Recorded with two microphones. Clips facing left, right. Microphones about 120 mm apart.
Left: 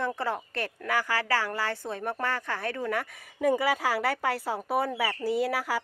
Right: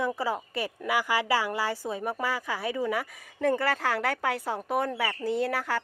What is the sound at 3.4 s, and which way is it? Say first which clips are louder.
Speech: left 1 dB; 10° left (ahead or behind).